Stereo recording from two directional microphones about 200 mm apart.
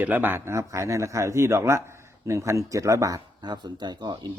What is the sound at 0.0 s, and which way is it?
A man's voice, 10° right (ahead or behind).